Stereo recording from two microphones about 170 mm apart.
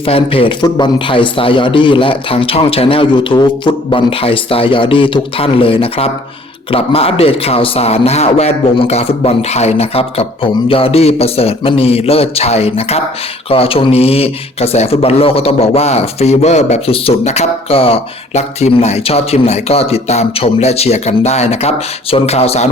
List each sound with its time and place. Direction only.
0.0 s speech: 30° left (ahead or behind)